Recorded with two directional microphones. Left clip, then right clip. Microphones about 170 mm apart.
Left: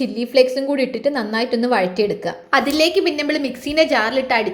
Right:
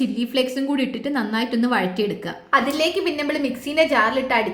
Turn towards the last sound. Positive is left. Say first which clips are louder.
# left 1 dB
turn(degrees=15)  # may be behind; listen again after turning